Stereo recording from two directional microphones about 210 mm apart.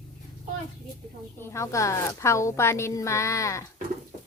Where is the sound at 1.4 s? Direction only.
15° left (ahead or behind).